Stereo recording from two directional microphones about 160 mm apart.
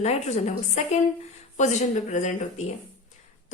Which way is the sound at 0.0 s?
45° left (ahead or behind).